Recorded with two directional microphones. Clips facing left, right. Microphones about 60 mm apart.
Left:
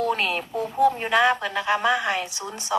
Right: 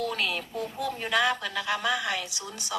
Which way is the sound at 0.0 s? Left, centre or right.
Left.